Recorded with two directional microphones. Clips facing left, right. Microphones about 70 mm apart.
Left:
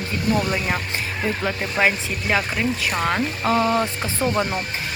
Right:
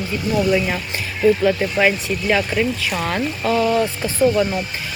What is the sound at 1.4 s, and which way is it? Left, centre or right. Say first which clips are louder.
Speech: right 4 dB; left.